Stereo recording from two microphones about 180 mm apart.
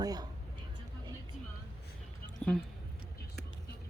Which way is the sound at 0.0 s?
20° right (ahead or behind).